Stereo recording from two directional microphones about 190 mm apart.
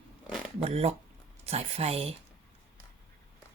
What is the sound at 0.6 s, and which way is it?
Speech, 30° right (ahead or behind).